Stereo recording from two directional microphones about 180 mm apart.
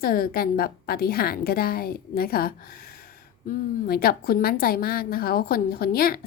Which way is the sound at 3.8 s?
60° left (ahead or behind).